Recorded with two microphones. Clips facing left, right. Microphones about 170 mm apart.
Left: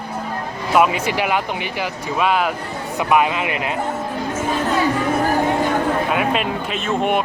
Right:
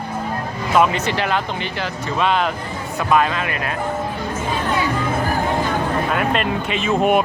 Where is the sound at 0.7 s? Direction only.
10° left (ahead or behind).